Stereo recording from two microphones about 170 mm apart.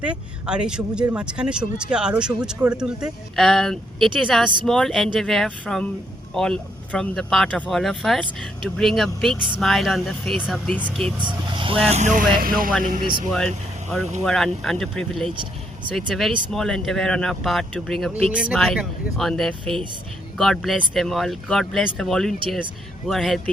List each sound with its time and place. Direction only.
0.0 s speech: 5° right (ahead or behind)
11.2 s speech: 30° right (ahead or behind)
11.9 s a sound: 45° right (ahead or behind)
12.4 s speech: 55° right (ahead or behind)
14.3 s speech: 5° left (ahead or behind)